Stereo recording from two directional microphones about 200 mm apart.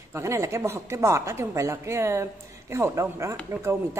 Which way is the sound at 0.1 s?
15° right (ahead or behind).